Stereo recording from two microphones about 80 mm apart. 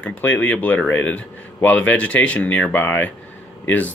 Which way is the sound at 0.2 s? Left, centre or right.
Left.